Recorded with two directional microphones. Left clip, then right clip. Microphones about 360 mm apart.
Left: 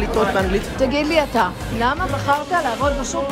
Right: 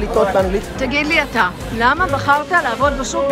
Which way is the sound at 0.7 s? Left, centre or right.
Centre.